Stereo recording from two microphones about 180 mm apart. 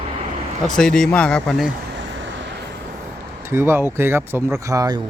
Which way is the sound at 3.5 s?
15° right (ahead or behind).